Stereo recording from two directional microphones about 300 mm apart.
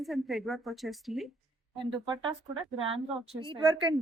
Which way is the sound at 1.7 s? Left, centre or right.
Centre.